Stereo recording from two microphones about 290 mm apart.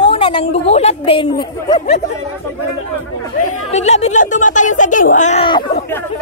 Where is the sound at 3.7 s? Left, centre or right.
Left.